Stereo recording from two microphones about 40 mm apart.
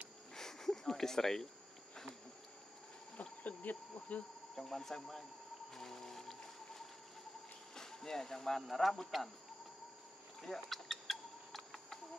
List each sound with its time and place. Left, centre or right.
0.3 s insect: centre
3.2 s insect: left
4.6 s speech: centre
5.8 s music: centre
7.7 s speech: centre
10.4 s chicken: centre